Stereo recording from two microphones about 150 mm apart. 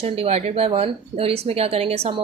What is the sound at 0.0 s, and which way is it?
A woman's voice, 40° right (ahead or behind).